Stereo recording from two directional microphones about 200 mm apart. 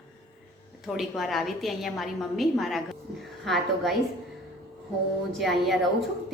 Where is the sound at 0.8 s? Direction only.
Centre (ahead or behind).